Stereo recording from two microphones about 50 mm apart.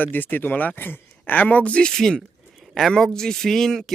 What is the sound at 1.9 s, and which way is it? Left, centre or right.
Speech, centre.